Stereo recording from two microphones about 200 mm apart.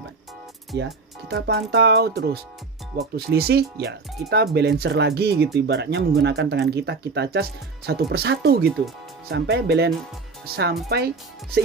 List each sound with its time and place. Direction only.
0.7 s speech: 60° right (ahead or behind)